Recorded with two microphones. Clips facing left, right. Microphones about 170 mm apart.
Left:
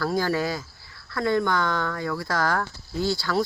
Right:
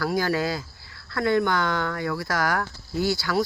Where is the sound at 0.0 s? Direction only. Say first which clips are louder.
Even; 10° right (ahead or behind).